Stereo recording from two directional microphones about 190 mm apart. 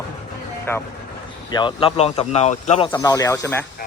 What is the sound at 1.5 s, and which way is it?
Speech, 25° left (ahead or behind).